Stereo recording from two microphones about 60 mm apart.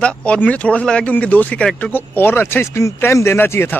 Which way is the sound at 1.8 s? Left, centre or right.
Left.